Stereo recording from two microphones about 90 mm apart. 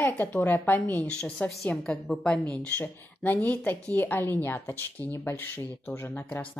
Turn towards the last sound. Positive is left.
turn(degrees=20)  # may be behind; listen again after turning